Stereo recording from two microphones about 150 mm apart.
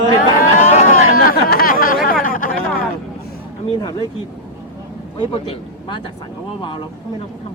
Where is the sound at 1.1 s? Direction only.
85° left; by 2.7 s 70° left (ahead or behind).